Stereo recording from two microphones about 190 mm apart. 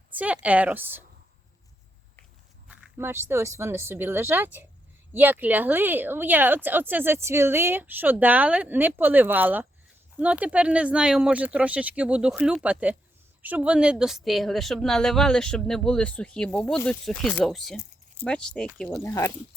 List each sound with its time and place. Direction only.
0.1 s speech: 5° right (ahead or behind)
2.6 s speech: 10° right (ahead or behind)
19.0 s speech: 15° left (ahead or behind)